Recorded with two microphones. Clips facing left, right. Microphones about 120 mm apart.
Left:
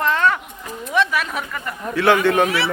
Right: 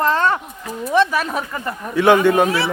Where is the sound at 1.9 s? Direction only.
15° right (ahead or behind).